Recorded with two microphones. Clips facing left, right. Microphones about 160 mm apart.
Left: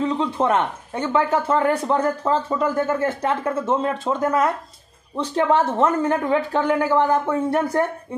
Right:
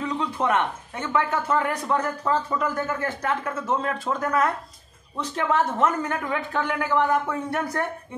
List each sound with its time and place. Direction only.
0.0 s a man's voice: 30° left (ahead or behind)